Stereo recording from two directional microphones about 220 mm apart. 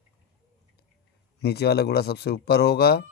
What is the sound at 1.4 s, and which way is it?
Speech, 45° left (ahead or behind).